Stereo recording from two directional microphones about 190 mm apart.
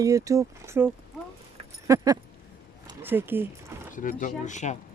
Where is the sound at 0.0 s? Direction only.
15° right (ahead or behind).